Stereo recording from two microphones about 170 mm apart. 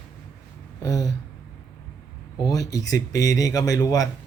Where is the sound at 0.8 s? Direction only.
20° left (ahead or behind).